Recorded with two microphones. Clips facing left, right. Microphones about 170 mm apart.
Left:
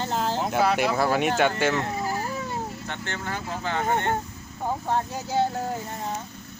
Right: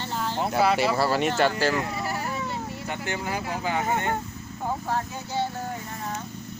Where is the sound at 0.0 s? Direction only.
40° left (ahead or behind).